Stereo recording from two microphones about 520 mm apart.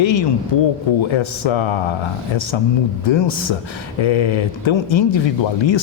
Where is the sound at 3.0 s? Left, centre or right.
Left.